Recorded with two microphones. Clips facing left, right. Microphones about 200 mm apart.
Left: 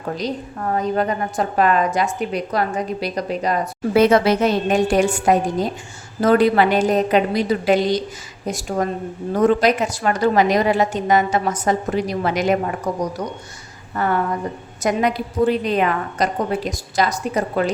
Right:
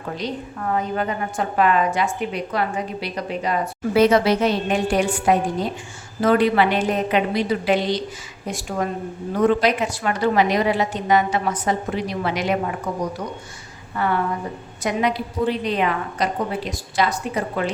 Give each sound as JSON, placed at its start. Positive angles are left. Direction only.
{"t": 0.7, "sound": "a woman's voice", "side_deg": 40}
{"t": 14.0, "sound": "a woman's voice", "side_deg": 45}